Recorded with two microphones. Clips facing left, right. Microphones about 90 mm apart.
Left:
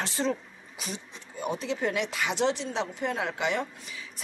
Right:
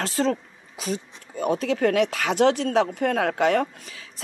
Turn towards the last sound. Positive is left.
turn(degrees=-50)  # may be behind; listen again after turning